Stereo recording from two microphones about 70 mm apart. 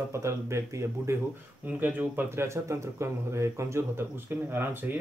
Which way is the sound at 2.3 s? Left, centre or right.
Right.